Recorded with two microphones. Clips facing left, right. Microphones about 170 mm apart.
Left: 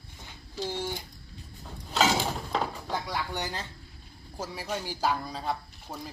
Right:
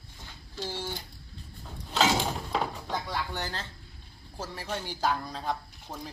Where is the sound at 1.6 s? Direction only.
Centre (ahead or behind).